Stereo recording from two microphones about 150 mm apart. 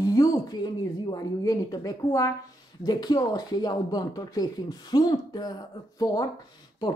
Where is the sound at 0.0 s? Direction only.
25° left (ahead or behind).